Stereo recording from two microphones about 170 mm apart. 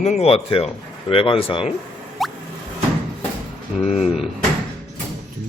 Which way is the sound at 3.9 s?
40° left (ahead or behind).